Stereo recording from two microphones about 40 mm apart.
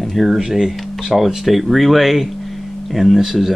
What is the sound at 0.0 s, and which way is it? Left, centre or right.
Speech, centre.